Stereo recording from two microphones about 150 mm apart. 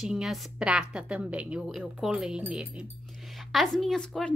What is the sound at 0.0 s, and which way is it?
A woman's voice, 5° right (ahead or behind).